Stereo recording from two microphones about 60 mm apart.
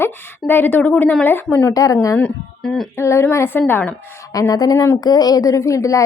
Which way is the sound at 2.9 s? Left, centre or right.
Left.